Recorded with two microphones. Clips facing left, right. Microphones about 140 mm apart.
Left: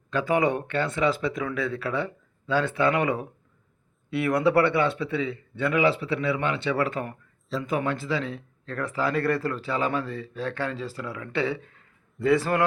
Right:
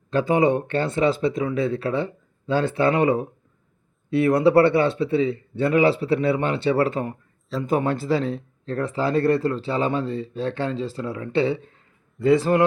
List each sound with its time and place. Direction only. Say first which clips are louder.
0.1 s speech: right 4 dB; 25° right (ahead or behind)